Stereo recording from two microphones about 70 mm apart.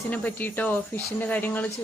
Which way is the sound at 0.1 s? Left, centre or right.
Left.